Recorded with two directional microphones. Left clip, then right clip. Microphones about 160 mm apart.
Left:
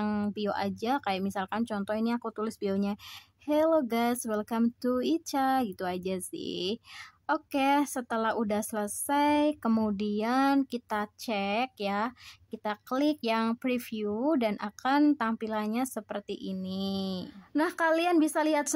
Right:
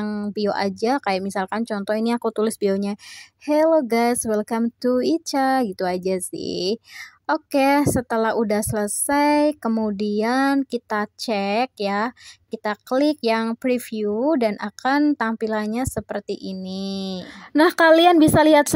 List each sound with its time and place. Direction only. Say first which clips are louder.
0.0 s a sound: right 4 dB; 15° right (ahead or behind)
0.3 s a woman's voice: right 9 dB; 30° right (ahead or behind)
9.7 s speech: right 6 dB; 15° right (ahead or behind)
9.9 s a woman's voice: right 8 dB; 30° right (ahead or behind)
17.6 s a woman's voice: right 13 dB; 50° right (ahead or behind)